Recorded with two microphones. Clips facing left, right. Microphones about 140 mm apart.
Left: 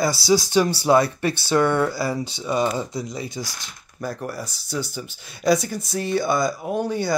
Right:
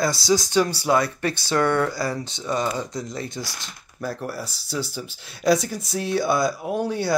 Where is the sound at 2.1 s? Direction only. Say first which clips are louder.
Left 2 dB; 5° left (ahead or behind).